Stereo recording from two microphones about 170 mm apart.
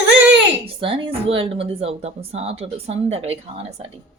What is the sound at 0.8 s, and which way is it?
Speech, 30° right (ahead or behind).